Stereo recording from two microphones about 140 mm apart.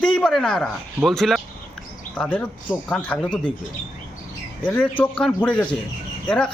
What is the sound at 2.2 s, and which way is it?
Speech, 10° left (ahead or behind).